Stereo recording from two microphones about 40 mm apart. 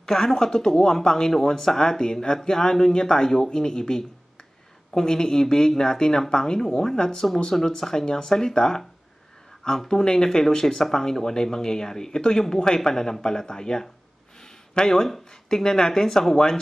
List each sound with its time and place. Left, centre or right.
0.0 s speech: centre